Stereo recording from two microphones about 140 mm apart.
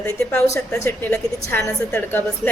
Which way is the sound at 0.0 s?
15° left (ahead or behind).